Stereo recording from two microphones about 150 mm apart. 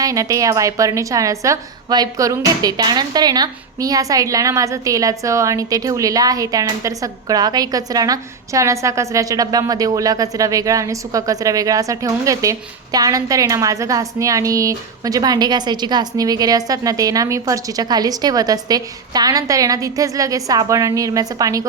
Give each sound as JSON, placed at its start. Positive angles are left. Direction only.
{"t": 0.0, "sound": "a woman's voice", "side_deg": -20}